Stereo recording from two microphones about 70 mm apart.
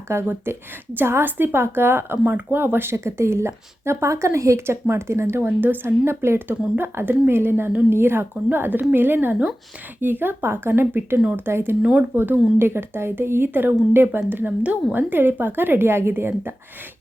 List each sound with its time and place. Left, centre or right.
0.1 s speech: right
5.4 s speech: right
11.8 s speech: centre
12.1 s speech: right